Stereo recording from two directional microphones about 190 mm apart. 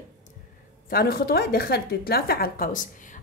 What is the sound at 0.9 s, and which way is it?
A woman's voice, 50° left (ahead or behind).